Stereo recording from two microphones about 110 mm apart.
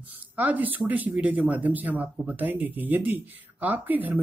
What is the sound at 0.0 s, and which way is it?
Speech, 15° right (ahead or behind).